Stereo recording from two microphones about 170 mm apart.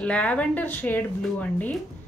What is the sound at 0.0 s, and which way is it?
A woman's voice, 5° left (ahead or behind).